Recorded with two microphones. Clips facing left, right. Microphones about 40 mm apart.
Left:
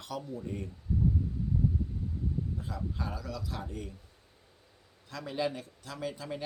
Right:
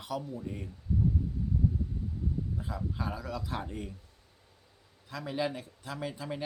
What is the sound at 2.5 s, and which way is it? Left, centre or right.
Speech, centre.